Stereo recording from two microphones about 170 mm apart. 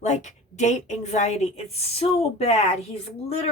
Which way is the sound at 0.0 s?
45° left (ahead or behind).